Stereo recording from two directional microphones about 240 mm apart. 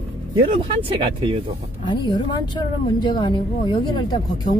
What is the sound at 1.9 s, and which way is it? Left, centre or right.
Speech, centre.